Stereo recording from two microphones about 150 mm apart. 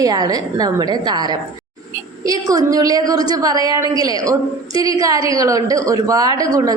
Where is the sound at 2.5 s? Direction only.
25° right (ahead or behind).